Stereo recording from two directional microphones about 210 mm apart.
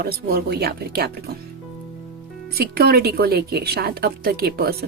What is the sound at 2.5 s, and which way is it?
A woman's voice, 50° right (ahead or behind).